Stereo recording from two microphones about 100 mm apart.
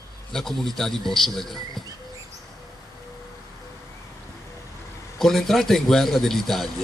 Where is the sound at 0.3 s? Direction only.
5° left (ahead or behind).